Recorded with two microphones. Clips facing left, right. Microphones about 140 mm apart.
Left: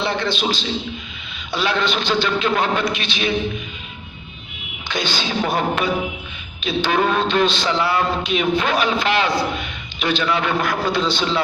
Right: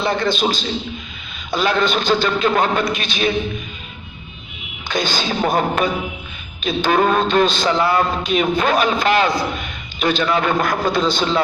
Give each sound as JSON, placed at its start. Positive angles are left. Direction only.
{"t": 0.0, "sound": "a man's voice", "side_deg": -45}
{"t": 4.9, "sound": "a man's voice", "side_deg": -45}